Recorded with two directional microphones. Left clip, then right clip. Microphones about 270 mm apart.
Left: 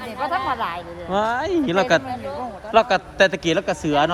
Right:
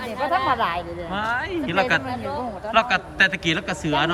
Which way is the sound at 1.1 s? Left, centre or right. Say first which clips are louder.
Left 5 dB; centre.